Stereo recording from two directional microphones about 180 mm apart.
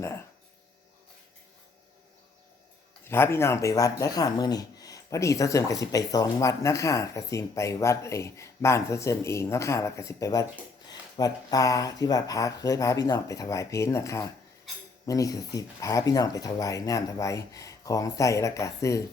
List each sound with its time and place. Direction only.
3.1 s speech: 15° left (ahead or behind)